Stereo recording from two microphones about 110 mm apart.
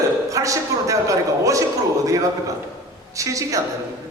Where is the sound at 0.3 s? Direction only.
30° right (ahead or behind).